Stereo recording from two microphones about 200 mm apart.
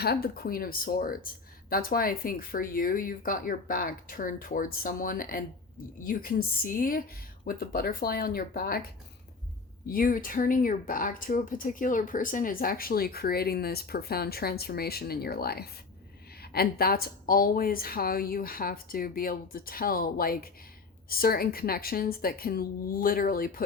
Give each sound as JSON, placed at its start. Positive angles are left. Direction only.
{"t": 0.0, "sound": "speech", "side_deg": 50}
{"t": 9.9, "sound": "speech", "side_deg": 45}